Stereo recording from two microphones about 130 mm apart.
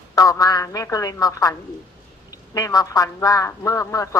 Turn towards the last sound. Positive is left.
turn(degrees=25)  # may be behind; listen again after turning